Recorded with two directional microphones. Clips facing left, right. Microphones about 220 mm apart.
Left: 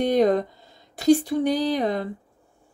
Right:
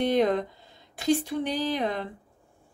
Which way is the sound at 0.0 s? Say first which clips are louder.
Left 4 dB; 40° left (ahead or behind).